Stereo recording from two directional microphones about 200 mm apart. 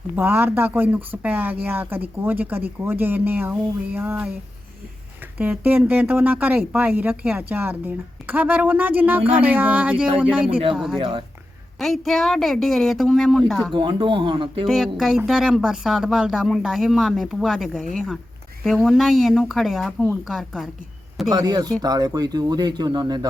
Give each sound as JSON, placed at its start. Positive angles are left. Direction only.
{"t": 0.2, "sound": "speech", "side_deg": -10}
{"t": 5.4, "sound": "speech", "side_deg": -10}
{"t": 10.9, "sound": "speech", "side_deg": -25}
{"t": 11.8, "sound": "speech", "side_deg": 0}
{"t": 13.7, "sound": "speech", "side_deg": -25}
{"t": 14.7, "sound": "speech", "side_deg": 0}
{"t": 21.2, "sound": "speech", "side_deg": -20}